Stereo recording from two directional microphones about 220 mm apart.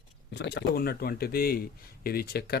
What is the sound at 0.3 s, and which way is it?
Speech, 50° left (ahead or behind).